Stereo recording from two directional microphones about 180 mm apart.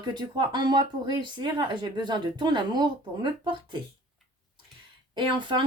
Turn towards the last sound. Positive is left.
turn(degrees=-25)  # may be behind; listen again after turning